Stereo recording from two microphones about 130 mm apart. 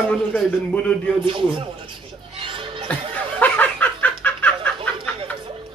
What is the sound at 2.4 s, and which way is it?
Music, 40° right (ahead or behind).